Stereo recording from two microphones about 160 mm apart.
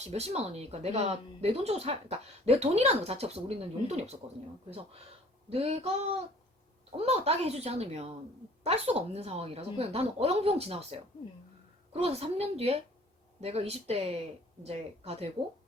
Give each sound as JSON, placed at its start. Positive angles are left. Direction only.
{"t": 0.0, "sound": "speech", "side_deg": -40}
{"t": 5.5, "sound": "speech", "side_deg": -40}
{"t": 6.9, "sound": "speech", "side_deg": -40}